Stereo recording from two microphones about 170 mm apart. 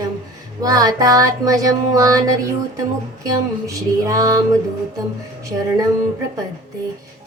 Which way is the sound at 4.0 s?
20° right (ahead or behind).